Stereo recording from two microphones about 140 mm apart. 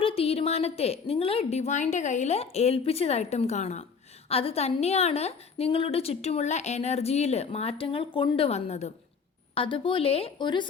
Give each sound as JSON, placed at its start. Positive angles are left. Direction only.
{"t": 0.0, "sound": "a woman's voice", "side_deg": 45}
{"t": 4.3, "sound": "a woman's voice", "side_deg": 45}
{"t": 9.6, "sound": "speech", "side_deg": 40}